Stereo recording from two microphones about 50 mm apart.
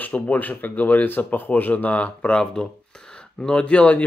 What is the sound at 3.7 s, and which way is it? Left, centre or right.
Speech, left.